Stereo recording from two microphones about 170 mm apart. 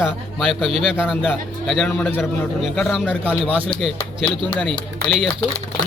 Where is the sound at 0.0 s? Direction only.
Centre (ahead or behind).